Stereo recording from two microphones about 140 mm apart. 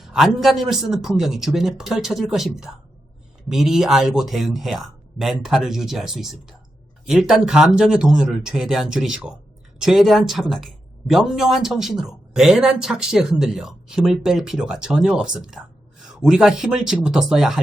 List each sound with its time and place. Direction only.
0.0 s a man's voice: centre (ahead or behind)